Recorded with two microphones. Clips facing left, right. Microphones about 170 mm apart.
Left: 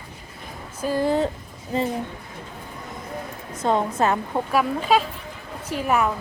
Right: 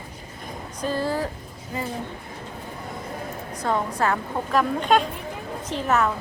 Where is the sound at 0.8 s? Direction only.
15° left (ahead or behind).